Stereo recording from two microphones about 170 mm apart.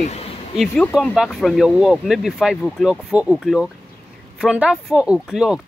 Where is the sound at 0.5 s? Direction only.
Centre (ahead or behind).